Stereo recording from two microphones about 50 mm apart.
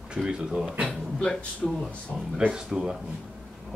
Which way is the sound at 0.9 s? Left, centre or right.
Centre.